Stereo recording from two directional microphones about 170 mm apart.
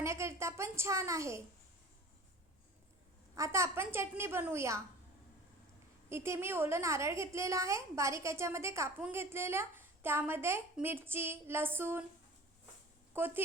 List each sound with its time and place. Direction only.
0.0 s a woman's voice: 15° right (ahead or behind)
3.3 s a woman's voice: 15° right (ahead or behind)
6.1 s a woman's voice: 15° right (ahead or behind)
13.1 s a woman's voice: 10° right (ahead or behind)